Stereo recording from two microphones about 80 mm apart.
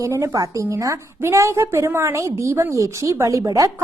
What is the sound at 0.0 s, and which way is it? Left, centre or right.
A woman's voice, right.